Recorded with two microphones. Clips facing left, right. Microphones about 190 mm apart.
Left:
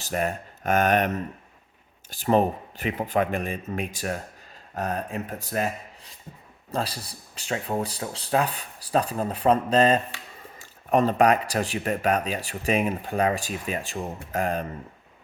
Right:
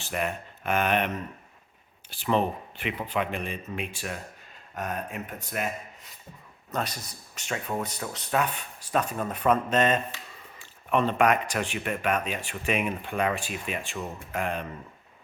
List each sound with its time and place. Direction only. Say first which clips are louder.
0.0 s speech: left 3 dB; 40° left (ahead or behind)